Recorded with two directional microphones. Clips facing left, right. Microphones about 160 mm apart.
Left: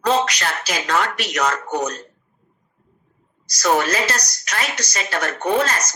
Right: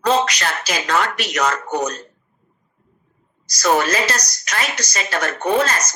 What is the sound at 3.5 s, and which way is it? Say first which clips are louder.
Speech: right 1 dB; 90° right.